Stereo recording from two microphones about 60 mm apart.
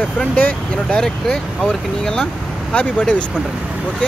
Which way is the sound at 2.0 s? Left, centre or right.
Centre.